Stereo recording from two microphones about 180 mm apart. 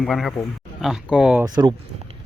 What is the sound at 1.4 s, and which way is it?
Speech, 25° right (ahead or behind).